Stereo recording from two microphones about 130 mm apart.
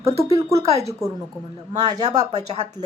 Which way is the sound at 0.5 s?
55° right (ahead or behind).